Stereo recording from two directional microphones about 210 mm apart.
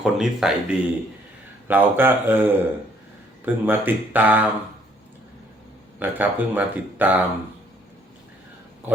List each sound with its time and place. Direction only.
0.0 s speech: centre (ahead or behind)
6.0 s speech: 10° right (ahead or behind)